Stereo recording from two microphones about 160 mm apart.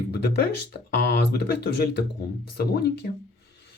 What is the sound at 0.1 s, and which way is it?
Speech, 90° left.